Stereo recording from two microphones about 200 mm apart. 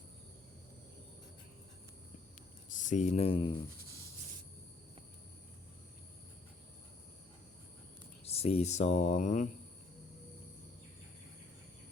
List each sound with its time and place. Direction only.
2.6 s speech: 40° left (ahead or behind)
8.2 s speech: 30° left (ahead or behind)